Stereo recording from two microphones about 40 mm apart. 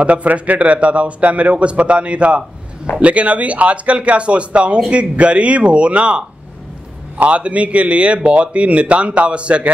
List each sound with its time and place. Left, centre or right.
0.0 s speech: right